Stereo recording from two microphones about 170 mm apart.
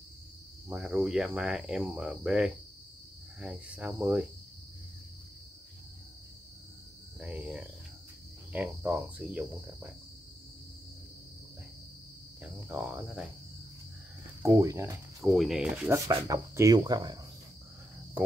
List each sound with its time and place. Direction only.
0.7 s speech: centre (ahead or behind)
7.2 s speech: 5° right (ahead or behind)
8.5 s cricket: 10° right (ahead or behind)
12.4 s cricket: 10° right (ahead or behind)
14.4 s cricket: 20° right (ahead or behind)
15.2 s speech: centre (ahead or behind)
15.9 s speech: 20° right (ahead or behind)